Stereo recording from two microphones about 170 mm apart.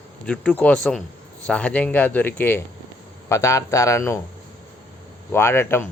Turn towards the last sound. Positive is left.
turn(degrees=15)  # may be behind; listen again after turning